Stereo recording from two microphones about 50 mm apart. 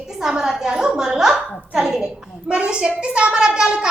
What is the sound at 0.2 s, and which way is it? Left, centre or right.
A woman's voice, centre.